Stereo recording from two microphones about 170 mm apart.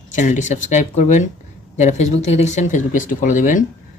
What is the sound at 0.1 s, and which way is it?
Speech, 50° left (ahead or behind).